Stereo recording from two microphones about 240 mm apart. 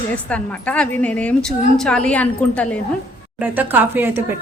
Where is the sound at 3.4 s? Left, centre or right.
Centre.